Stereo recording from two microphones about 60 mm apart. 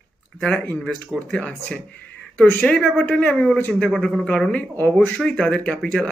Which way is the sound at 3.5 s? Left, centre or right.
Left.